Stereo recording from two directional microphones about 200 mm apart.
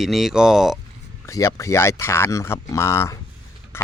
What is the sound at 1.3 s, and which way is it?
Speech, 15° left (ahead or behind).